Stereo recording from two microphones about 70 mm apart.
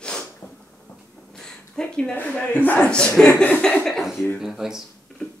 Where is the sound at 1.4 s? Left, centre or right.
Centre.